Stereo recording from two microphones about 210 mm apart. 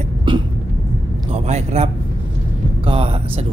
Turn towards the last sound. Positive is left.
turn(degrees=-25)  # may be behind; listen again after turning